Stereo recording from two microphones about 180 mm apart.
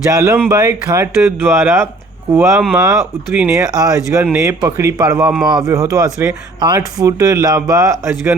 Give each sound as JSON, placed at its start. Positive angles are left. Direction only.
{"t": 0.1, "sound": "speech", "side_deg": -15}